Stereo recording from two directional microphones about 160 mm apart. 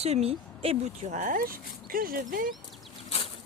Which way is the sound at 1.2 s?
65° right (ahead or behind).